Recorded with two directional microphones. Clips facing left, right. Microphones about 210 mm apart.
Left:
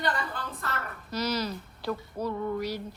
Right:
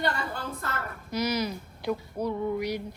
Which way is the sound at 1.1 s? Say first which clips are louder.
Right 2 dB; 10° right (ahead or behind).